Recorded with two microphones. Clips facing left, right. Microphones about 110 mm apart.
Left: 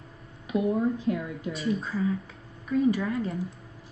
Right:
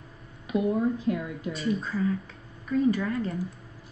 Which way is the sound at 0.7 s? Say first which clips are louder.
Even; 25° left (ahead or behind).